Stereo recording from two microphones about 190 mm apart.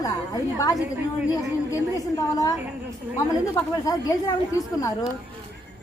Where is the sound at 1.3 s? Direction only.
20° left (ahead or behind).